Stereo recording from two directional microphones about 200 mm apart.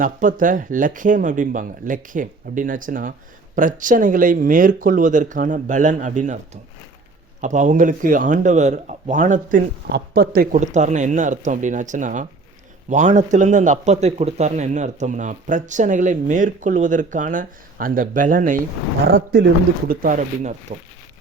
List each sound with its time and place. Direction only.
0.0 s speech: 40° right (ahead or behind)
19.1 s a man's voice: 55° right (ahead or behind)
19.9 s speech: 45° right (ahead or behind)